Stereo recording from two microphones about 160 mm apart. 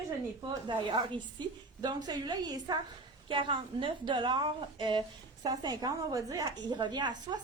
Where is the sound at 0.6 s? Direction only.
30° right (ahead or behind).